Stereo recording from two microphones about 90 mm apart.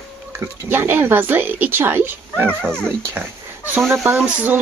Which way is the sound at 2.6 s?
10° left (ahead or behind).